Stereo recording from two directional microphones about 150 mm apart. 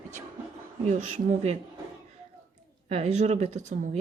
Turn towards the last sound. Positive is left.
turn(degrees=-50)  # may be behind; listen again after turning